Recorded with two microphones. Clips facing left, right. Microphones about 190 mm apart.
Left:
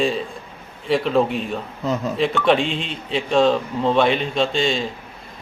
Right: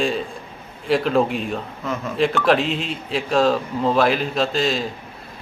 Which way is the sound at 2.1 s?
Centre (ahead or behind).